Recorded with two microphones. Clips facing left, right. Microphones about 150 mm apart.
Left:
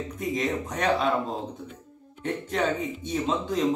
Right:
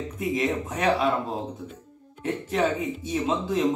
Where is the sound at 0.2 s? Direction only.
5° right (ahead or behind).